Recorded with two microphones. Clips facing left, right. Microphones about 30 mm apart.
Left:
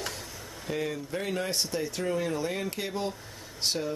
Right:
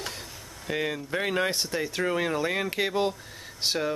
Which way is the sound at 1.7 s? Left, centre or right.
Right.